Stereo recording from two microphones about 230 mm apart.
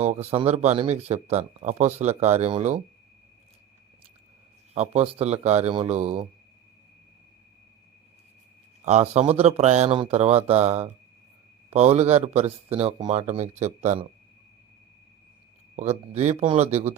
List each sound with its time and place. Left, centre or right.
0.0 s speech: right
4.7 s speech: right
8.8 s speech: right
15.7 s speech: right